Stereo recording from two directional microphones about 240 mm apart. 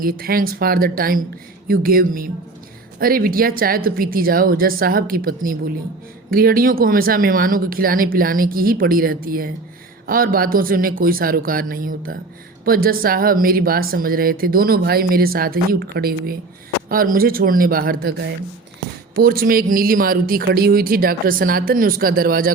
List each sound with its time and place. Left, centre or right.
0.0 s speech: right